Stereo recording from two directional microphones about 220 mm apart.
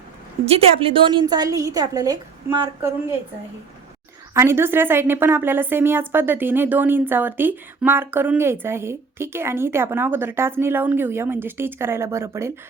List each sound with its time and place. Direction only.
0.4 s a woman's voice: 25° right (ahead or behind)
4.4 s a woman's voice: 10° right (ahead or behind)